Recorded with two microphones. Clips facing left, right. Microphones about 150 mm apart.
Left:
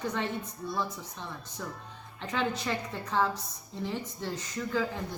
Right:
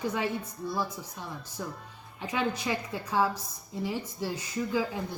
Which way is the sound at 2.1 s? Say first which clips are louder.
Right 1 dB; 10° right (ahead or behind).